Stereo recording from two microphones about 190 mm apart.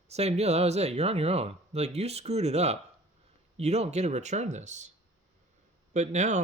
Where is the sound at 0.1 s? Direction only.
35° right (ahead or behind).